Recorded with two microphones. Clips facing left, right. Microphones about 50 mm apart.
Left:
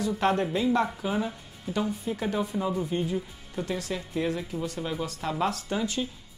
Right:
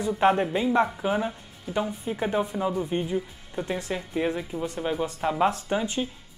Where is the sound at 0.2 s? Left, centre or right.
Right.